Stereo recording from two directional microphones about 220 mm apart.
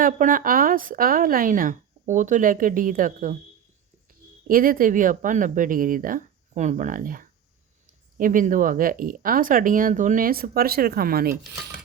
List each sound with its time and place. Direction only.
0.0 s speech: 40° right (ahead or behind)
4.1 s a sound: 40° right (ahead or behind)
4.4 s speech: 40° right (ahead or behind)